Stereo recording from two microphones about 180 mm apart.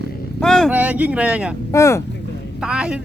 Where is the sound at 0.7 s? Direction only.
10° right (ahead or behind).